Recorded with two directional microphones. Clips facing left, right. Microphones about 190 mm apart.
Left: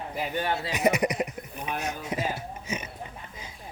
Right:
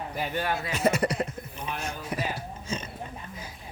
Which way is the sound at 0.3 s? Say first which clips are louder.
Left 1 dB; 25° left (ahead or behind).